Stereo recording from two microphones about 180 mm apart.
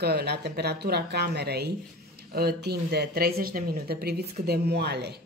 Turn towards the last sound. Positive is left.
turn(degrees=-65)  # may be behind; listen again after turning